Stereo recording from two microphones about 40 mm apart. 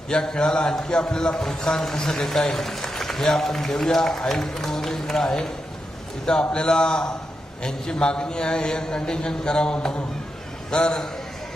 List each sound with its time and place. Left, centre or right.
0.1 s a man's voice: centre